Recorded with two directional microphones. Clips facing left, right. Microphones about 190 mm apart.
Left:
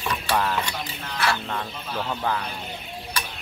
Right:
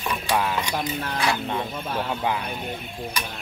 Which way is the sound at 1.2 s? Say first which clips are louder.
Even; 15° right (ahead or behind).